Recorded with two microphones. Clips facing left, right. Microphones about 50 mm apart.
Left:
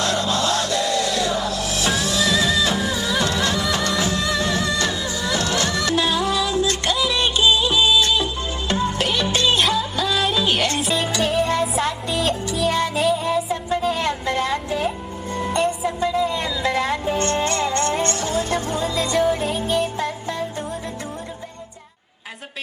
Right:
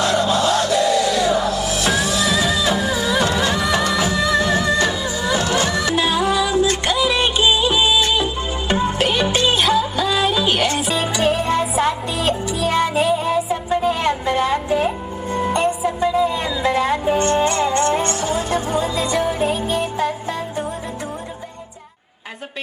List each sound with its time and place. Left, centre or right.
0.0 s music: centre; by 13.4 s right
13.5 s a sound: right
14.8 s music: centre